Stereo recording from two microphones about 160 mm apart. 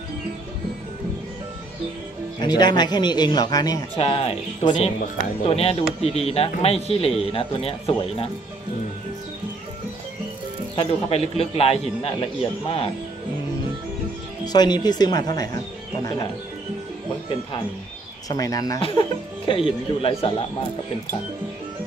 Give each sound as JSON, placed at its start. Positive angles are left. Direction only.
{"t": 2.4, "sound": "speech", "side_deg": 25}
{"t": 4.0, "sound": "speech", "side_deg": 40}
{"t": 10.8, "sound": "speech", "side_deg": 40}
{"t": 14.4, "sound": "speech", "side_deg": 25}
{"t": 18.3, "sound": "speech", "side_deg": 25}
{"t": 18.8, "sound": "speech", "side_deg": 35}